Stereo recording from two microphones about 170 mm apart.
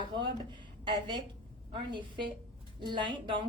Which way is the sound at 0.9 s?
30° right (ahead or behind).